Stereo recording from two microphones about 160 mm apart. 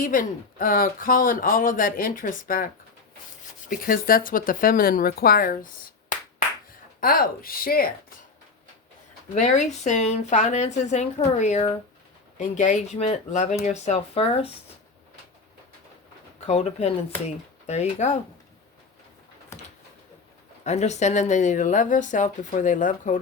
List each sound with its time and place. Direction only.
0.0 s speech: 60° left (ahead or behind)
3.7 s speech: 65° left (ahead or behind)
7.0 s speech: 65° left (ahead or behind)
9.3 s speech: 45° left (ahead or behind)
16.5 s speech: 40° left (ahead or behind)
20.7 s speech: 45° left (ahead or behind)